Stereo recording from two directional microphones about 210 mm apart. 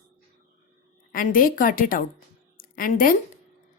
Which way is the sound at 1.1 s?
40° left (ahead or behind).